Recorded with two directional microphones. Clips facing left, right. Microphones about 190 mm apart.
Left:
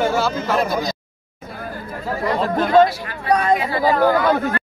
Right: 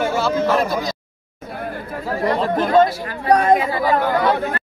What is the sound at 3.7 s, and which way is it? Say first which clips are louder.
Speech: left 2 dB; 30° left (ahead or behind).